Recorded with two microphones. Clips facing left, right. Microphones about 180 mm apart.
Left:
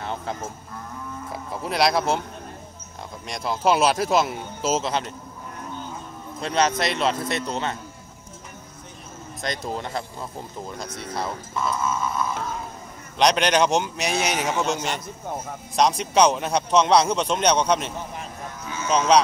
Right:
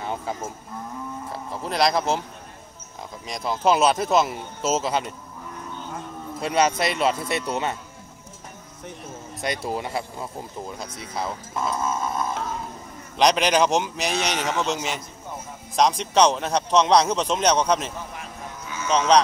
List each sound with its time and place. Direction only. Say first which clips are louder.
0.0 s cattle: right 1 dB; 5° right (ahead or behind)
1.3 s a man's voice: left 2 dB; 10° left (ahead or behind)
3.3 s a man's voice: even; centre (ahead or behind)
6.4 s a man's voice: right 1 dB; 5° right (ahead or behind)
9.7 s a man's voice: right 2 dB; 10° right (ahead or behind)
11.7 s a sound: even; 45° right (ahead or behind)
13.2 s a man's voice: even; centre (ahead or behind)
18.9 s a man's voice: even; 5° left (ahead or behind)